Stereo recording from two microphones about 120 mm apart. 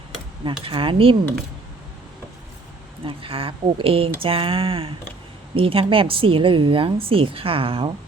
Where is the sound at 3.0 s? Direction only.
50° right (ahead or behind).